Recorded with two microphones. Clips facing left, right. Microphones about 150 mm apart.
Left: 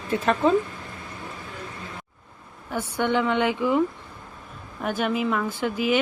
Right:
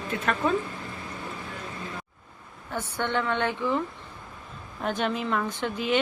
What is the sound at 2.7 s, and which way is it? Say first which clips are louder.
A woman's voice: left 5 dB; 10° left (ahead or behind).